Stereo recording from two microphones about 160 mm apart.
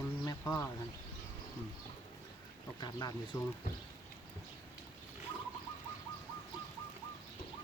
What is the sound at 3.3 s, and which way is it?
Speech, 15° left (ahead or behind).